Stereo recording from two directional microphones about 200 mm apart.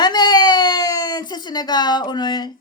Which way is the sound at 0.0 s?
20° left (ahead or behind).